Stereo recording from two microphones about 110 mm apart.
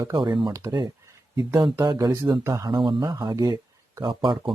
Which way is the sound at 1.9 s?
25° right (ahead or behind).